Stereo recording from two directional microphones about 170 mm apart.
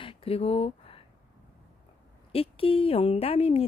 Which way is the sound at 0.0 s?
30° left (ahead or behind).